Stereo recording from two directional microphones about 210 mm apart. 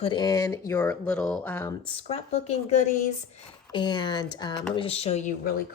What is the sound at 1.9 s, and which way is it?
Speech, 30° left (ahead or behind).